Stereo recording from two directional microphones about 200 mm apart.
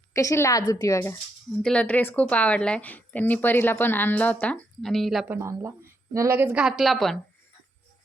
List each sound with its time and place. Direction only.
0.1 s a woman's voice: 15° left (ahead or behind)
5.3 s a woman's voice: 15° right (ahead or behind)